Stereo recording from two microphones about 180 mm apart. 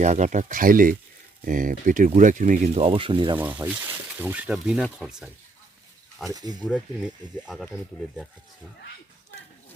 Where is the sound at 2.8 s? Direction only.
30° right (ahead or behind).